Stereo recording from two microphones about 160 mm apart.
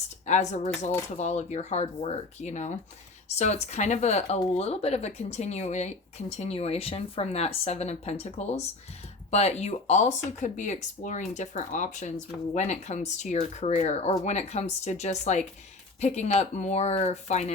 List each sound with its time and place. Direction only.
0.3 s speech: 45° left (ahead or behind)